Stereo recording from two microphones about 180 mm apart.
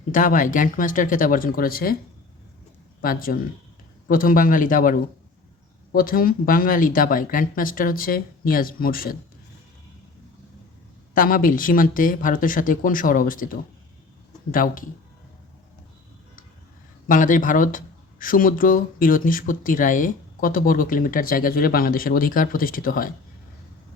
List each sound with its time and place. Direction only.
0.1 s speech: 50° left (ahead or behind)
3.0 s speech: 55° left (ahead or behind)
11.1 s speech: 50° left (ahead or behind)
17.1 s speech: 50° left (ahead or behind)